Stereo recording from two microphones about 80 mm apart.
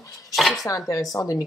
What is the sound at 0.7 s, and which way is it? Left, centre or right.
Speech, left.